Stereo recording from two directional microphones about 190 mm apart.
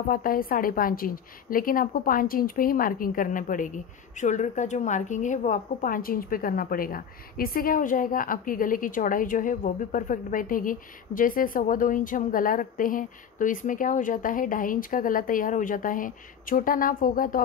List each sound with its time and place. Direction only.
0.1 s a woman's voice: 50° left (ahead or behind)